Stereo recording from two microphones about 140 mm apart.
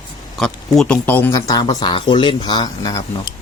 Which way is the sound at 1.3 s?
25° left (ahead or behind).